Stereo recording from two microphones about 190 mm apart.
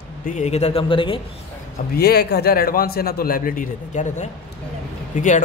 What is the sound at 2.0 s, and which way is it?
A man's voice, 55° left (ahead or behind).